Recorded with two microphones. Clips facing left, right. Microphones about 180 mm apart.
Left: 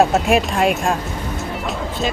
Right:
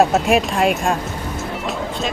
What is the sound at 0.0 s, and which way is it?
Speech, centre (ahead or behind).